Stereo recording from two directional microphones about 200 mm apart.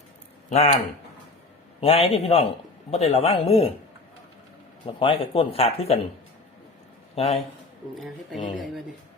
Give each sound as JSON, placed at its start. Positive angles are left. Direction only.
{"t": 0.5, "sound": "speech", "side_deg": 30}
{"t": 1.8, "sound": "speech", "side_deg": 30}
{"t": 4.9, "sound": "speech", "side_deg": 25}
{"t": 7.2, "sound": "speech", "side_deg": 30}
{"t": 7.9, "sound": "speech", "side_deg": 0}